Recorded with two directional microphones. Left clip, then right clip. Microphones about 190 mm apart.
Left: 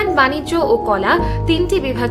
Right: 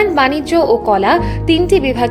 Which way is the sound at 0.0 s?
15° right (ahead or behind).